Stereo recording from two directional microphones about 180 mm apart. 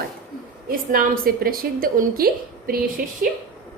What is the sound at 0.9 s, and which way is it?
A woman's voice, 55° right (ahead or behind).